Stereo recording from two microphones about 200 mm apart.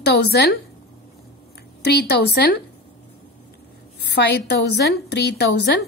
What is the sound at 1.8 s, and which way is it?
Speech, 55° left (ahead or behind).